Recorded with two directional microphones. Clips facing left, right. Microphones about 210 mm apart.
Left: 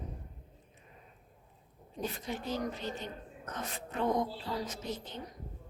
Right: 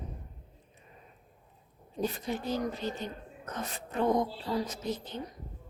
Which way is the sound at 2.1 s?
35° right (ahead or behind).